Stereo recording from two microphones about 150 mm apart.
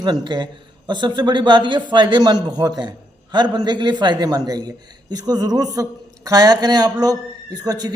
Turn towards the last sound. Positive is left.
turn(degrees=-25)  # may be behind; listen again after turning